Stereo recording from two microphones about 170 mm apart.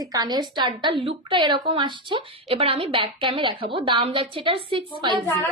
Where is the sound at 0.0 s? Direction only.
20° right (ahead or behind).